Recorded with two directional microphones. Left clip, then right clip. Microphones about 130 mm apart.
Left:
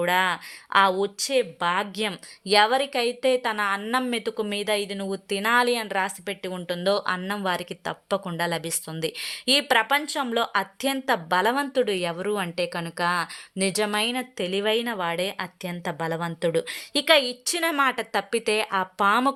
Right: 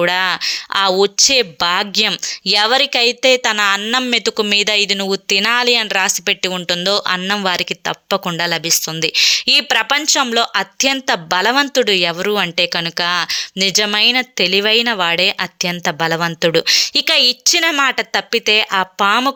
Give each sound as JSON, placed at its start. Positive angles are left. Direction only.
{"t": 0.0, "sound": "speech", "side_deg": -20}